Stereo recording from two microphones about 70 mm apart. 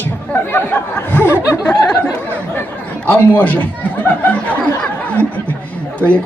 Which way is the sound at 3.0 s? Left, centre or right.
Left.